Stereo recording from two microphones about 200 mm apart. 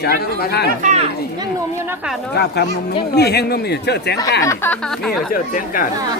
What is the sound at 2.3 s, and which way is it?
Speech, 55° left (ahead or behind).